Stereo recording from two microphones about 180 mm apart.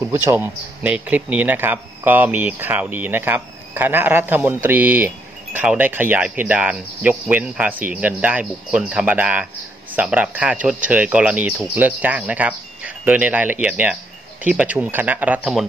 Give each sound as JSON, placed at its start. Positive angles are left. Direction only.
{"t": 0.0, "sound": "speech", "side_deg": -10}